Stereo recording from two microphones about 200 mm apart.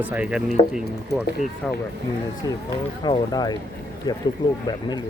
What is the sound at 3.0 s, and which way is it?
Speech, 20° left (ahead or behind).